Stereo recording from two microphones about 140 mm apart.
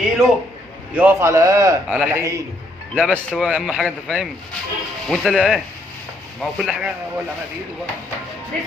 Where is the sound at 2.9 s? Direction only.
10° left (ahead or behind).